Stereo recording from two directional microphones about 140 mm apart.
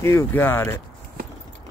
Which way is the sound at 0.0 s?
15° left (ahead or behind).